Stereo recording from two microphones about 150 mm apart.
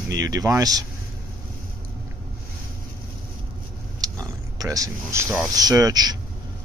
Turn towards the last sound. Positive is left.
turn(degrees=-25)  # may be behind; listen again after turning